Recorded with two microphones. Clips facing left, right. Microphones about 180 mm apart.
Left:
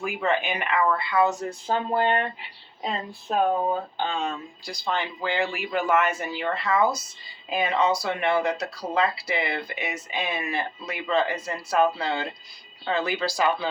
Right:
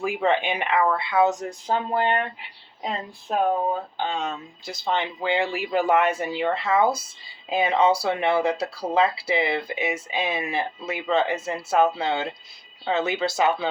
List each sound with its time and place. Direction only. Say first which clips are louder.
0.0 s speech: right 3 dB; 30° right (ahead or behind)